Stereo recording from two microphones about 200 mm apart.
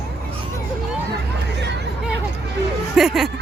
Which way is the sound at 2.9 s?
Centre (ahead or behind).